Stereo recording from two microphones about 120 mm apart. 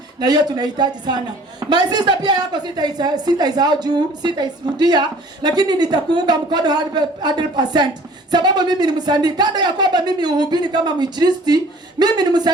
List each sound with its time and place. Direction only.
0.2 s a woman's voice: 35° right (ahead or behind)